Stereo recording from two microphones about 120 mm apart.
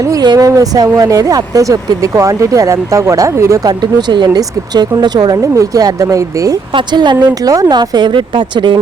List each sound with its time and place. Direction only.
0.0 s speech: 30° right (ahead or behind)
6.7 s speech: 40° right (ahead or behind)